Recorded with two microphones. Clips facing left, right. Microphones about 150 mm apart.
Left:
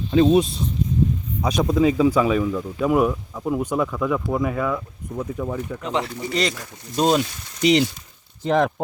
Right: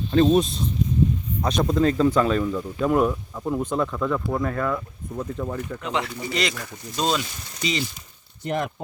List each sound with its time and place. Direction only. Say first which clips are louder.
0.1 s speech: left 2 dB; 10° left (ahead or behind)
5.8 s speech: left 2 dB; 35° left (ahead or behind)
6.9 s speech: left 6 dB; 50° left (ahead or behind)